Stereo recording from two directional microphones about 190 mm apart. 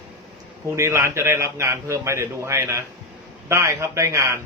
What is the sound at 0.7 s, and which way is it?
A man's voice, 15° right (ahead or behind).